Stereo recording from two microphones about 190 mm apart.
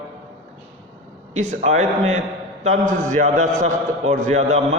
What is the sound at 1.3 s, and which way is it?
A man's voice, 35° right (ahead or behind).